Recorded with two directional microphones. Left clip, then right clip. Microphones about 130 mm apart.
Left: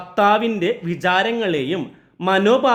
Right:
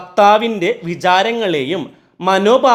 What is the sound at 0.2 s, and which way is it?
Speech, 25° right (ahead or behind).